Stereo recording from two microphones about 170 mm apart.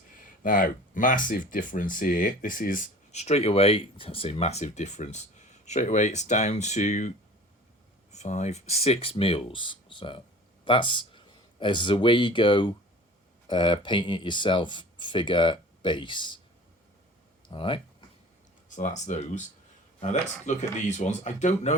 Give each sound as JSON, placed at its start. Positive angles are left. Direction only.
{"t": 0.2, "sound": "speech", "side_deg": 55}
{"t": 8.1, "sound": "speech", "side_deg": 45}
{"t": 17.5, "sound": "speech", "side_deg": 30}
{"t": 18.7, "sound": "speech", "side_deg": 45}